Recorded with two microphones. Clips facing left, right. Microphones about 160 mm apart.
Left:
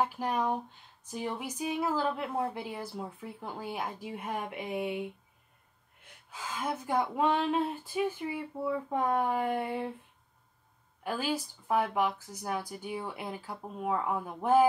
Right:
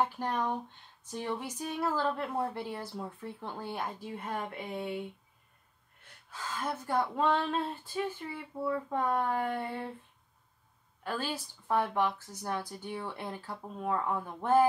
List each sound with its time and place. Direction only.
0.0 s speech: 10° left (ahead or behind)
6.3 s speech: 15° left (ahead or behind)
11.1 s speech: 10° left (ahead or behind)